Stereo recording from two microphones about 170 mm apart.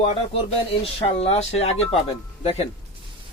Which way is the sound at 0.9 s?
35° left (ahead or behind).